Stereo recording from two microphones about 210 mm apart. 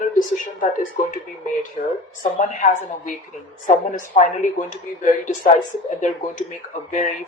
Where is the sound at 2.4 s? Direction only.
35° left (ahead or behind).